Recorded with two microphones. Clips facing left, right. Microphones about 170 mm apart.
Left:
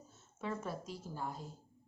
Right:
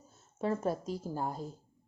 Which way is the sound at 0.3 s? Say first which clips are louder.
Right 8 dB; 40° right (ahead or behind).